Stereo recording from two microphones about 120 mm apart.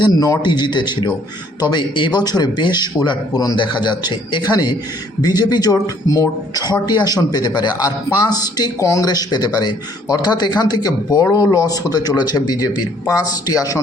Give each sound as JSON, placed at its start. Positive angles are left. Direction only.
{"t": 0.0, "sound": "a man's voice", "side_deg": 35}